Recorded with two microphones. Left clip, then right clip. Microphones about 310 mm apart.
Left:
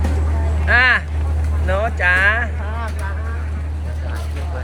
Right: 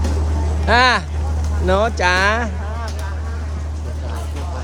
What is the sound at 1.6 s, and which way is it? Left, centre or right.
Music, right.